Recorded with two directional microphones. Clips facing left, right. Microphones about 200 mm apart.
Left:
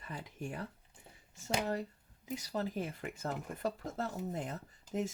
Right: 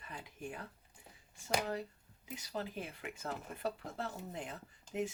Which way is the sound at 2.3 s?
45° left (ahead or behind).